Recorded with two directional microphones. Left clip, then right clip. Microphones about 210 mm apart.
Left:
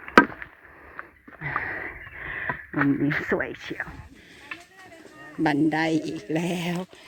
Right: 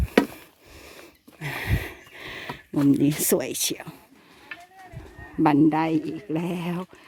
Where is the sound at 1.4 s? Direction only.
55° right (ahead or behind).